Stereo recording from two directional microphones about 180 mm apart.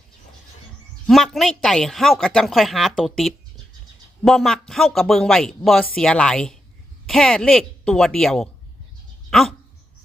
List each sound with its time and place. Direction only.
1.0 s a man's voice: centre (ahead or behind)
9.3 s dog: centre (ahead or behind)